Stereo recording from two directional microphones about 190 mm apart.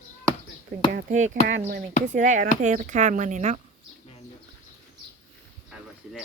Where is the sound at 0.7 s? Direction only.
40° right (ahead or behind).